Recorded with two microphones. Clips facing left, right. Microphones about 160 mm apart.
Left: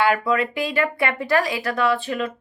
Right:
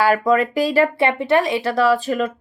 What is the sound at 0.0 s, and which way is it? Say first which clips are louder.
Speech: right 4 dB; 40° right (ahead or behind).